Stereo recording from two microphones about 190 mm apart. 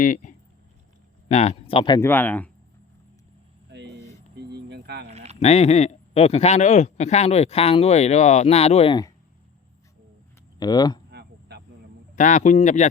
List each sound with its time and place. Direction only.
0.0 s speech: 45° left (ahead or behind)
1.3 s speech: 35° left (ahead or behind)
2.0 s speech: 10° left (ahead or behind)
3.7 s vehicle: 65° right (ahead or behind)
4.4 s a sound: 60° right (ahead or behind)
5.0 s a sound: 35° right (ahead or behind)
5.4 s speech: 35° left (ahead or behind)
10.6 s speech: 20° left (ahead or behind)
11.1 s a sound: 60° right (ahead or behind)
12.1 s speech: 40° left (ahead or behind)